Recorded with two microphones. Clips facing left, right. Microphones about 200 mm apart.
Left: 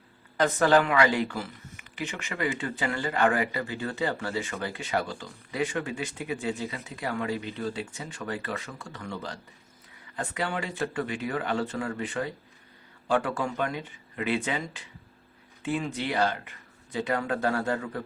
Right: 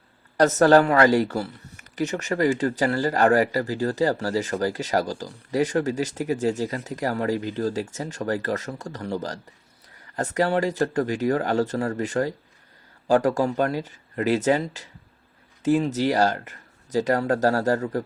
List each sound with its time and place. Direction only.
0.3 s speech: 40° right (ahead or behind)